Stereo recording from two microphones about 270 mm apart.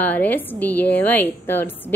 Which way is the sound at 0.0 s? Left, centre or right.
Centre.